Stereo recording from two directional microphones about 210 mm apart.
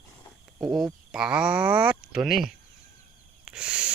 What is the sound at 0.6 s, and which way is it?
Speech, centre (ahead or behind).